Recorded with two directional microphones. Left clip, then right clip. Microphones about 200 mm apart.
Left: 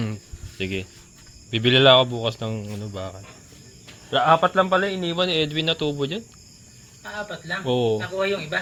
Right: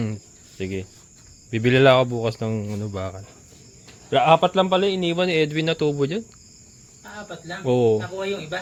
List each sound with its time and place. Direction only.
0.6 s speech: 15° right (ahead or behind); by 6.2 s 40° right (ahead or behind)
7.3 s speech: 45° right (ahead or behind)